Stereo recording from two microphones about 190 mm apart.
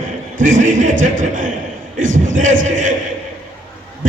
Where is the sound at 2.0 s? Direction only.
90° right.